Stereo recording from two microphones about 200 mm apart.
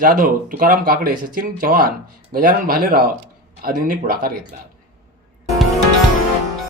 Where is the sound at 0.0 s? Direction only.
45° right (ahead or behind).